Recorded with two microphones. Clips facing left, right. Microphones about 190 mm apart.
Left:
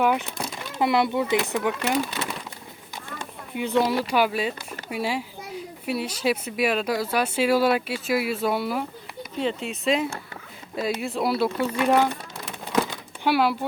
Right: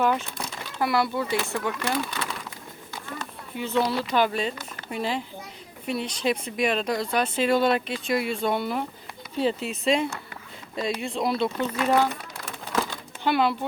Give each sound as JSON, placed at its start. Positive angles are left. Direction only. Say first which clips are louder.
{"t": 0.0, "sound": "speech", "louder": "left 1 dB", "side_deg": 10}
{"t": 0.4, "sound": "speech", "louder": "left 5 dB", "side_deg": 20}
{"t": 12.5, "sound": "crumpling", "louder": "left 3 dB", "side_deg": 5}
{"t": 12.9, "sound": "a sound", "louder": "left 2 dB", "side_deg": 10}